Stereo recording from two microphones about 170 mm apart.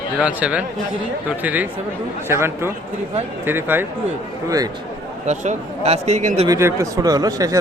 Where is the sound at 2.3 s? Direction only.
15° right (ahead or behind).